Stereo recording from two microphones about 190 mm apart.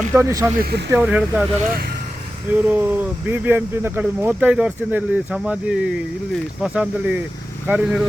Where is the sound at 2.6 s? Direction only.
10° right (ahead or behind).